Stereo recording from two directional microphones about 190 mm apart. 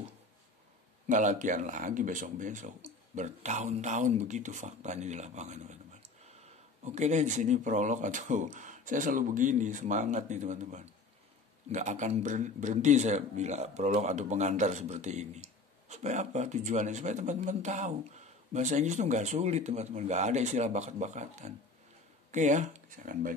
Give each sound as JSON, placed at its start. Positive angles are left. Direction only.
{"t": 1.0, "sound": "a man's voice", "side_deg": -40}
{"t": 6.8, "sound": "a man's voice", "side_deg": -35}